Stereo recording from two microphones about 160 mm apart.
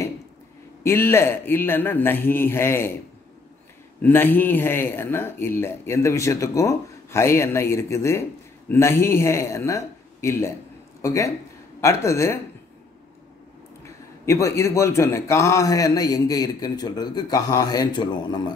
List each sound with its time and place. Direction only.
0.8 s speech: 15° left (ahead or behind)
4.0 s speech: 10° left (ahead or behind)
13.8 s a man's voice: 20° left (ahead or behind)